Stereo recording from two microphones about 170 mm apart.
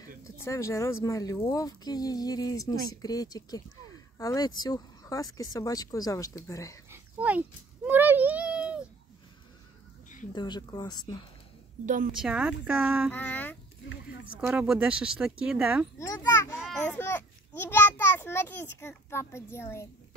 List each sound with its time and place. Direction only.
0.4 s speech: 15° left (ahead or behind)
6.9 s a sound: 10° right (ahead or behind)
10.3 s speech: 25° left (ahead or behind)
11.8 s a woman's voice: 50° right (ahead or behind)
12.2 s speech: 10° right (ahead or behind)
13.1 s a child's voice: 10° left (ahead or behind)
14.3 s speech: 5° right (ahead or behind)
16.0 s children playing: 20° left (ahead or behind)
16.6 s babbling: centre (ahead or behind)
17.0 s a child's voice: 15° left (ahead or behind)